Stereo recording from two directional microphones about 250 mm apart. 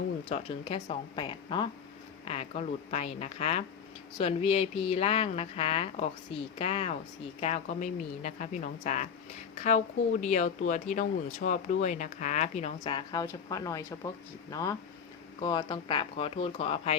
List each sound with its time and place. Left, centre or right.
0.3 s speech: left